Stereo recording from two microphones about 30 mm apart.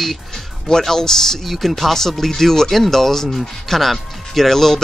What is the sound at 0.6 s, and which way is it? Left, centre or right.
Speech, centre.